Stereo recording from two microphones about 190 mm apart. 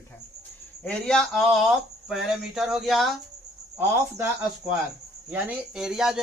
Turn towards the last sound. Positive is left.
turn(degrees=-5)  # may be behind; listen again after turning